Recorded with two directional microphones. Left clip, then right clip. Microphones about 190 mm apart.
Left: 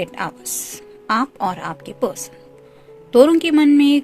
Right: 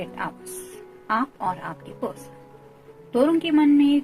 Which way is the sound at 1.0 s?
60° left (ahead or behind).